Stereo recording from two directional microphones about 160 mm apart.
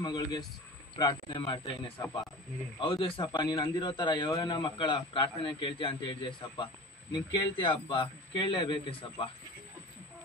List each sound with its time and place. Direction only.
0.0 s a man's voice: 25° left (ahead or behind)